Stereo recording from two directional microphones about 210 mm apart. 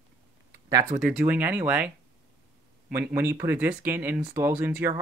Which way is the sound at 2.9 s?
10° right (ahead or behind).